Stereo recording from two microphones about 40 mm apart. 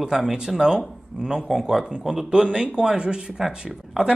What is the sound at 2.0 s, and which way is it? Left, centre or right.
Speech, centre.